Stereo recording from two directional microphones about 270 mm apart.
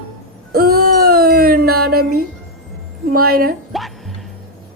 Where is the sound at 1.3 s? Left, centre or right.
Right.